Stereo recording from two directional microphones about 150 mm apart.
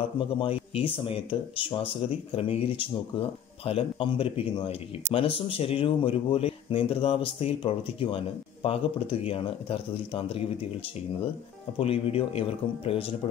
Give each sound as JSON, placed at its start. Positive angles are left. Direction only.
{"t": 0.3, "sound": "speech", "side_deg": 35}
{"t": 11.8, "sound": "speech", "side_deg": 40}